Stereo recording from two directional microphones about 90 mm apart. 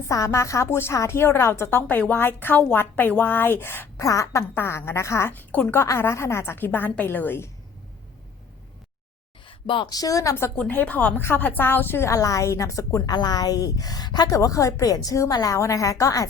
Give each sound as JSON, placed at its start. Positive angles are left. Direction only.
{"t": 0.1, "sound": "a woman's voice", "side_deg": 35}
{"t": 4.0, "sound": "a woman's voice", "side_deg": 35}
{"t": 5.3, "sound": "a woman's voice", "side_deg": 20}
{"t": 9.5, "sound": "a sound", "side_deg": 70}
{"t": 9.9, "sound": "a woman's voice", "side_deg": 40}
{"t": 10.6, "sound": "a woman's voice", "side_deg": 15}
{"t": 12.1, "sound": "a woman's voice", "side_deg": 35}
{"t": 13.1, "sound": "a woman's voice", "side_deg": 45}